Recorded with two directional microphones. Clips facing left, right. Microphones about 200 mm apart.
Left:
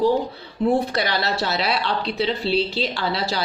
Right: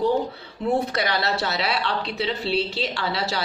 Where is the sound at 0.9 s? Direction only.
35° left (ahead or behind).